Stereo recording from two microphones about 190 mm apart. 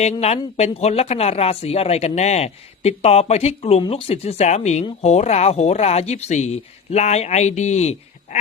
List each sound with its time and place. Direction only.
0.0 s speech: 35° left (ahead or behind)